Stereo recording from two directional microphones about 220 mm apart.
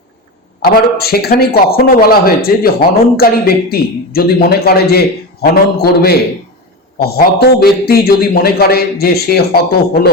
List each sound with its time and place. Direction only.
0.6 s a man's voice: 45° left (ahead or behind)